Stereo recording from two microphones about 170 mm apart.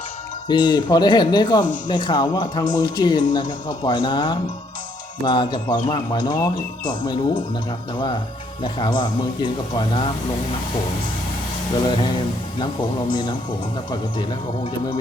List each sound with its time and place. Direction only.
0.4 s speech: 25° left (ahead or behind)
8.6 s speech: 25° left (ahead or behind)